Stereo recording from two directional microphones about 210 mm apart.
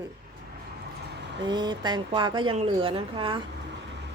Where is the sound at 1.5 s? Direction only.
20° right (ahead or behind).